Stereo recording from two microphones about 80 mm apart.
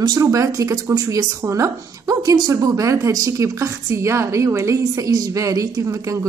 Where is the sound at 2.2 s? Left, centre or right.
Right.